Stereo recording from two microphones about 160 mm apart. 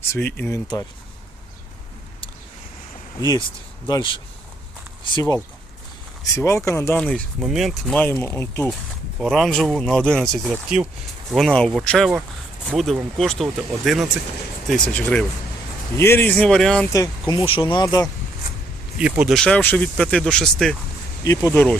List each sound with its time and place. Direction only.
0.0 s speech: 15° left (ahead or behind)
3.2 s speech: 25° left (ahead or behind)
6.2 s speech: 15° left (ahead or behind)
6.9 s speech: 5° left (ahead or behind)
9.1 s speech: centre (ahead or behind)
16.9 s speech: 20° left (ahead or behind)
18.9 s speech: 5° right (ahead or behind)
19.4 s speech: 5° left (ahead or behind)
21.2 s speech: 15° left (ahead or behind)